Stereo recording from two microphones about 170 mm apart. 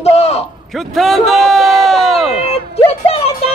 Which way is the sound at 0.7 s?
Centre (ahead or behind).